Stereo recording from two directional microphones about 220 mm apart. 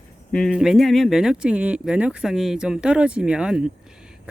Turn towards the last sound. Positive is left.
turn(degrees=-5)  # may be behind; listen again after turning